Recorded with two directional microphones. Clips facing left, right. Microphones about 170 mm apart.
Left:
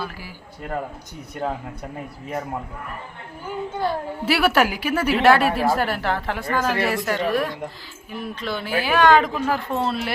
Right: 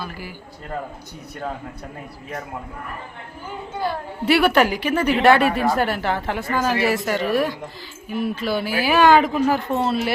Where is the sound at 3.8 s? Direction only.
Centre (ahead or behind).